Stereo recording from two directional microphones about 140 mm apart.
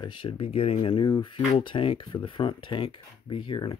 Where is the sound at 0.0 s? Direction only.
35° left (ahead or behind).